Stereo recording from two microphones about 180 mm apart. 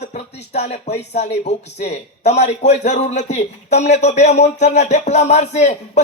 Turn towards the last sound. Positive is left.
turn(degrees=40)  # may be behind; listen again after turning